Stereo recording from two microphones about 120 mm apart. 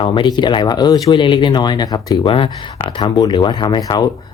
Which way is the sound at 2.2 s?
45° left (ahead or behind).